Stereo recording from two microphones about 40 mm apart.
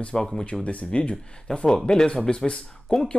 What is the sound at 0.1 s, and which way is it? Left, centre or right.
Speech, centre.